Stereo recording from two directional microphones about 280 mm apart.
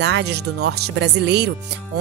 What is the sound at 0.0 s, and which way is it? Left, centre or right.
Speech, right.